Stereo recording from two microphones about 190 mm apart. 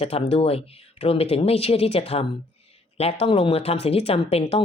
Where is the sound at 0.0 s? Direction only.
30° left (ahead or behind).